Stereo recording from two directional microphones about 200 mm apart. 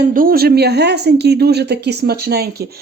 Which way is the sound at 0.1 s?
45° right (ahead or behind).